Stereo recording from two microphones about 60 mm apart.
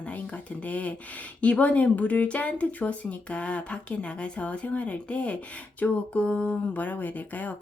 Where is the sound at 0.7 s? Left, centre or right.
Left.